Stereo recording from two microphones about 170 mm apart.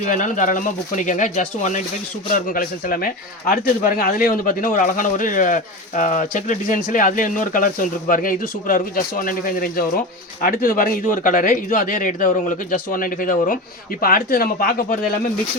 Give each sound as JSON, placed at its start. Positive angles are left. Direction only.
{"t": 0.0, "sound": "speech", "side_deg": 50}